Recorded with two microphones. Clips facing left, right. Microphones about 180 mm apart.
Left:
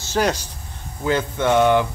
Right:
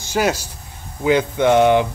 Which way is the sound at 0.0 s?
10° right (ahead or behind).